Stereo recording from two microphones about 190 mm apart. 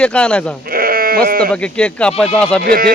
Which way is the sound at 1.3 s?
50° right (ahead or behind).